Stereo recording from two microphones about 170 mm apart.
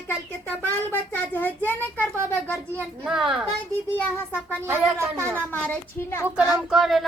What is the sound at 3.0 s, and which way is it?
Speech, centre (ahead or behind).